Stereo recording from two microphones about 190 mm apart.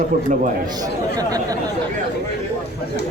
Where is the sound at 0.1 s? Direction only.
45° right (ahead or behind).